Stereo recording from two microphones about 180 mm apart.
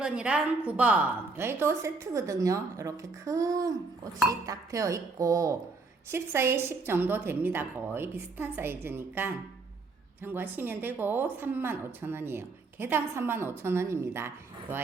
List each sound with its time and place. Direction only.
0.0 s a woman's voice: 5° right (ahead or behind)